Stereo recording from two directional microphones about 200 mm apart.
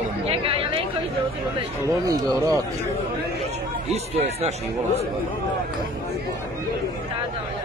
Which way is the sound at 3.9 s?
30° right (ahead or behind).